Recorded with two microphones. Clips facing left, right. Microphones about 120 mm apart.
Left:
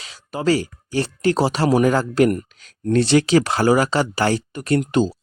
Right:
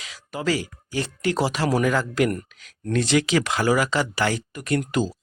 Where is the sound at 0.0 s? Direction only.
30° left (ahead or behind).